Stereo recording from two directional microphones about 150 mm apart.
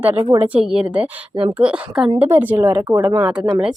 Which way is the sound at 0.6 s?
5° right (ahead or behind).